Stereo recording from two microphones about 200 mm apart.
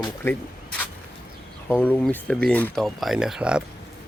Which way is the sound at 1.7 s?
10° left (ahead or behind).